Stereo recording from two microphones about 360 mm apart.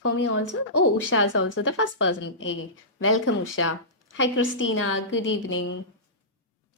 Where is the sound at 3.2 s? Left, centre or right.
Left.